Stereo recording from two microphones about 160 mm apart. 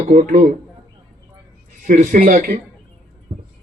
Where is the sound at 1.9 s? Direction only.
55° right (ahead or behind).